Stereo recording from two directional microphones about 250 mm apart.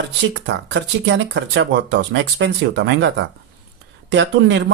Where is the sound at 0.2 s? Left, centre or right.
Right.